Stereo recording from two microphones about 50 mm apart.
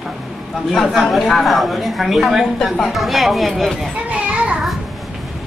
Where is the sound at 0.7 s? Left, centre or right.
Centre.